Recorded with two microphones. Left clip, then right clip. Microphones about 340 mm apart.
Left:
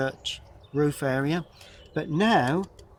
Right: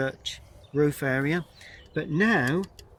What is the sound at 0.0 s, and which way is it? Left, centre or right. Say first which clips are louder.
Speech: left 1 dB; centre.